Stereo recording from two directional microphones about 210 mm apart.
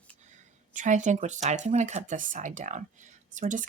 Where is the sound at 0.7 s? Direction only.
35° right (ahead or behind).